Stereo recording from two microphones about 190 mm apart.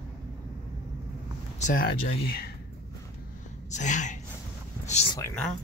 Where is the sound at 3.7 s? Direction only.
40° left (ahead or behind).